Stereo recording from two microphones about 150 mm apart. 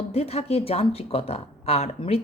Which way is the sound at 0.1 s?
45° left (ahead or behind).